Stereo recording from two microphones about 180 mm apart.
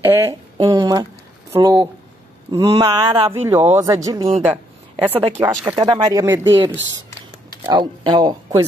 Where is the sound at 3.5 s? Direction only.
15° right (ahead or behind).